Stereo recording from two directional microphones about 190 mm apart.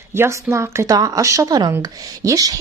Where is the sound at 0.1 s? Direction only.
15° right (ahead or behind).